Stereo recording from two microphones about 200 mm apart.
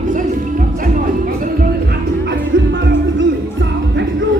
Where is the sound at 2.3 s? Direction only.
65° right (ahead or behind).